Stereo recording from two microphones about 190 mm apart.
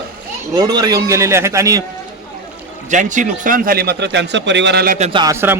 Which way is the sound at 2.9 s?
40° right (ahead or behind).